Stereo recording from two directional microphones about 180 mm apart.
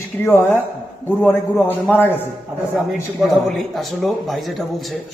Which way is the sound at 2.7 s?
Centre (ahead or behind).